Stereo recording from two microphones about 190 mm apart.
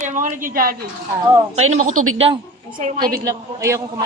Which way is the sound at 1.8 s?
35° right (ahead or behind).